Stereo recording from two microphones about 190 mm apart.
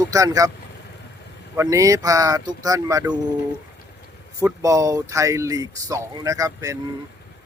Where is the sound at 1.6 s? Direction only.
15° right (ahead or behind).